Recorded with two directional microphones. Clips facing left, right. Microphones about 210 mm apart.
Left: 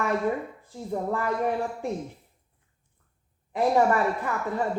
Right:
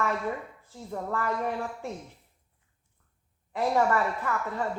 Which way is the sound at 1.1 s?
15° left (ahead or behind).